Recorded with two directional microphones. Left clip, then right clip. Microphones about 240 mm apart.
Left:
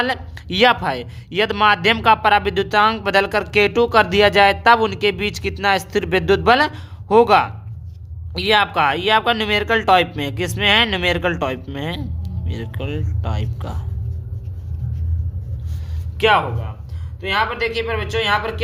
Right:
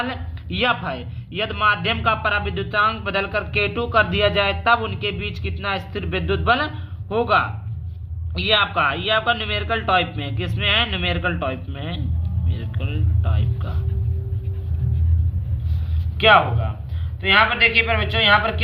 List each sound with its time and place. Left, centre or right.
0.0 s speech: left
8.3 s speech: left
16.1 s speech: left